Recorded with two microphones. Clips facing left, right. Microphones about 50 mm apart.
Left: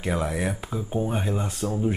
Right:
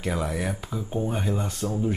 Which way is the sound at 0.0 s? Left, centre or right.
Centre.